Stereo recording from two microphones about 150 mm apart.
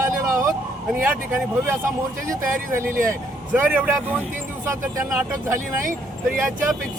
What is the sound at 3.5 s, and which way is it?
Speech, 10° right (ahead or behind).